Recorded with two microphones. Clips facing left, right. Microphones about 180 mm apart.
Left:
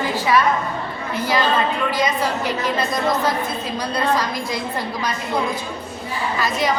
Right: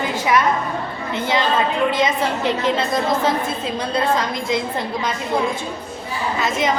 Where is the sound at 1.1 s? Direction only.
25° right (ahead or behind).